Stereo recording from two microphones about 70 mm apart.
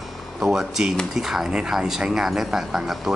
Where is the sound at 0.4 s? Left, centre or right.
Centre.